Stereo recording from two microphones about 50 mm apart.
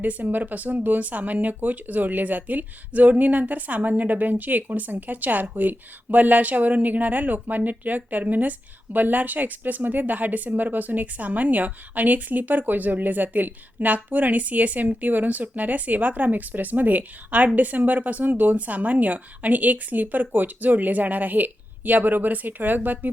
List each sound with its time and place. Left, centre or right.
0.0 s speech: right